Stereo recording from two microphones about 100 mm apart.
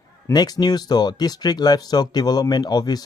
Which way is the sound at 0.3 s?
45° left (ahead or behind).